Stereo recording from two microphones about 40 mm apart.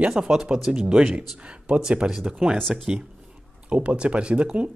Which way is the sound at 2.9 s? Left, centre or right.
Right.